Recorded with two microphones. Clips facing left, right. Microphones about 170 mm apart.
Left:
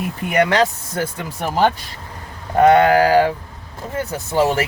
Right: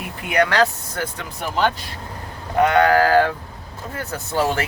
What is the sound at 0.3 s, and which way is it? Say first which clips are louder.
Speech: left 2 dB; 25° left (ahead or behind).